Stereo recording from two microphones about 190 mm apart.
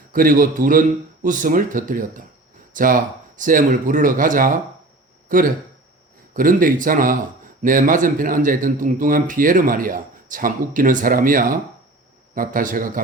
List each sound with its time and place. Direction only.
0.1 s speech: 50° right (ahead or behind)